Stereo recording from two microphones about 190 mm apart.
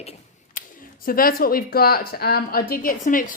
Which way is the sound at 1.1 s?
50° left (ahead or behind).